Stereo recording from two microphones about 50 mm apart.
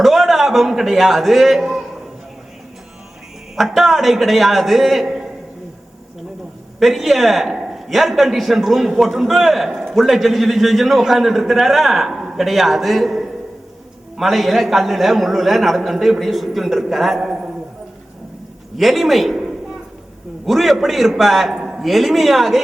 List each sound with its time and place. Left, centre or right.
0.0 s a man's voice: centre
3.5 s a man's voice: centre
5.0 s a sound: centre
6.7 s a man's voice: centre
18.8 s a man's voice: centre